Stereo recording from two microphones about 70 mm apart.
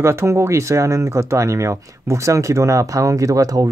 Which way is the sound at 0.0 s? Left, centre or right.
Right.